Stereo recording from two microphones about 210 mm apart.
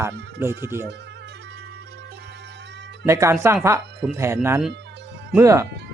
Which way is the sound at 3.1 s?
15° right (ahead or behind).